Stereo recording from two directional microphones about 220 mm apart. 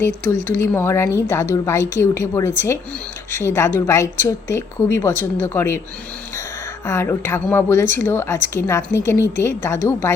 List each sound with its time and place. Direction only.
0.3 s speech: 40° right (ahead or behind)
0.6 s a woman's voice: 10° left (ahead or behind)
6.8 s a woman's voice: 10° left (ahead or behind)